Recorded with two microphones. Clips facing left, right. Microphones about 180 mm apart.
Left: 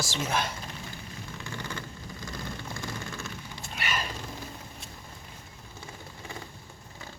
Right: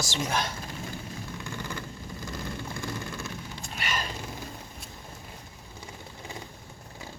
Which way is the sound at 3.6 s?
5° left (ahead or behind).